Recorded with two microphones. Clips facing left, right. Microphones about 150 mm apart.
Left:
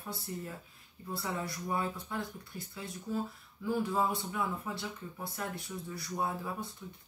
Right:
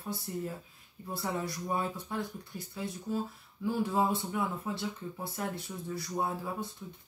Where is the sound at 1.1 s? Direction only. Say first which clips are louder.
Right 2 dB; 20° right (ahead or behind).